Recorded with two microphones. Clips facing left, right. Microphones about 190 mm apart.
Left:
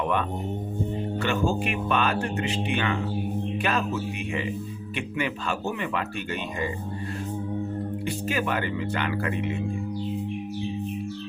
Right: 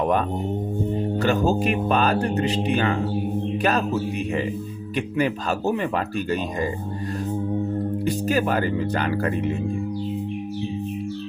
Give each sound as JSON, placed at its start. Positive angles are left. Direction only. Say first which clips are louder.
{"t": 0.0, "sound": "speech", "louder": "right 5 dB", "side_deg": -40}
{"t": 8.0, "sound": "speech", "louder": "right 6 dB", "side_deg": -40}